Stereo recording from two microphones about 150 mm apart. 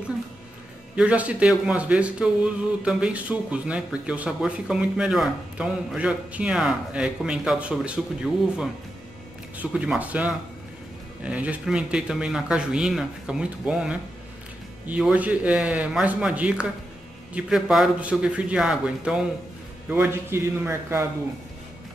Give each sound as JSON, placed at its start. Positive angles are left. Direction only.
{"t": 0.9, "sound": "a man's voice", "side_deg": -10}